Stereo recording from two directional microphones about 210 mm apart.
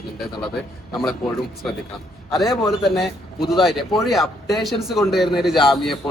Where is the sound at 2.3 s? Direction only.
Centre (ahead or behind).